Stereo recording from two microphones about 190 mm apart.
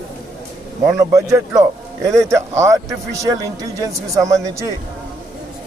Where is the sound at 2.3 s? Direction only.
15° right (ahead or behind).